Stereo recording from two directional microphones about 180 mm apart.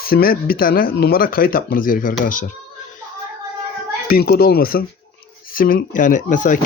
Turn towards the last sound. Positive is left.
turn(degrees=45)  # may be behind; listen again after turning